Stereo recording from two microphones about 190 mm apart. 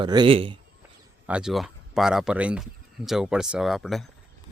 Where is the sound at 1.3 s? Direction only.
5° right (ahead or behind).